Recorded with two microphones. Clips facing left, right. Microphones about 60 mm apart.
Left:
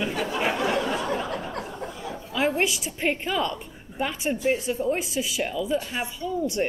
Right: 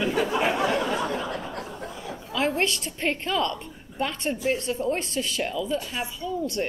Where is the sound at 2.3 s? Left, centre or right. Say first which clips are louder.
Left 1 dB; centre.